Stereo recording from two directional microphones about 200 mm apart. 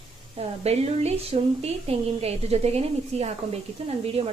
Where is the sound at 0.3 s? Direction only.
30° right (ahead or behind).